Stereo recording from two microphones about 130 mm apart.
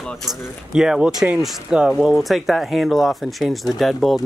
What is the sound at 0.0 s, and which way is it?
Speech, 5° right (ahead or behind).